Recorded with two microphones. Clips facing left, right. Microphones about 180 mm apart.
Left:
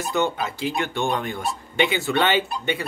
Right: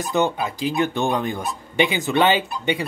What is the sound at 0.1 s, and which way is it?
Speech, 15° right (ahead or behind).